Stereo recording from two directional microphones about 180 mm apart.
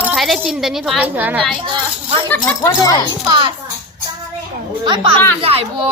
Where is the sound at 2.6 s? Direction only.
20° left (ahead or behind).